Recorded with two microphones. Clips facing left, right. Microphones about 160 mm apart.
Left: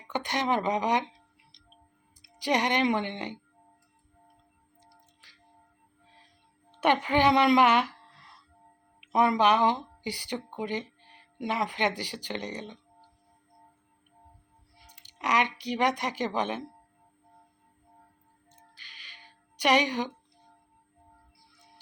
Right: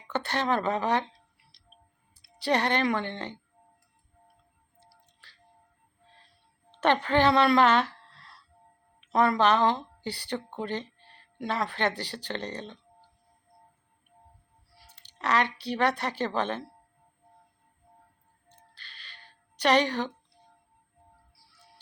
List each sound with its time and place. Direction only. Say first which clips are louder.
0.1 s a woman's voice: even; 15° left (ahead or behind)
4.8 s music: even; 15° left (ahead or behind)
6.7 s speech: right 1 dB; 15° left (ahead or behind)
14.8 s speech: right 1 dB; 15° left (ahead or behind)
18.7 s music: right 4 dB; 15° left (ahead or behind)